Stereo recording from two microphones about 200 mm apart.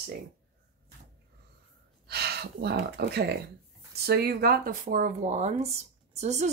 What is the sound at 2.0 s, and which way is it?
Speech, 55° right (ahead or behind).